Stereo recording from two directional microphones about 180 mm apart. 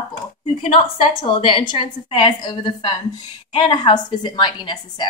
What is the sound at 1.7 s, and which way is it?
A woman's voice, 30° left (ahead or behind).